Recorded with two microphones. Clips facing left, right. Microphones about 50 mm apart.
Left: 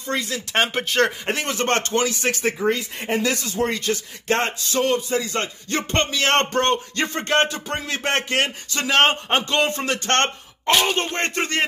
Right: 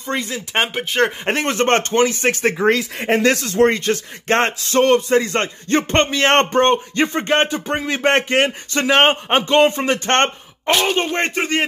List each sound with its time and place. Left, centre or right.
0.1 s speech: right
1.2 s speech: right
2.6 s speech: right
3.7 s speech: right
10.9 s speech: centre